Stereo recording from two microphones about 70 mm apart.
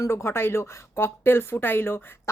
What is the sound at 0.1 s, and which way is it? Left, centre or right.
Speech, left.